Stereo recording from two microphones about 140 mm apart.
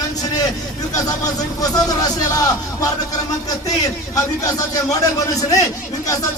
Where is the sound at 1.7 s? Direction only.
25° left (ahead or behind).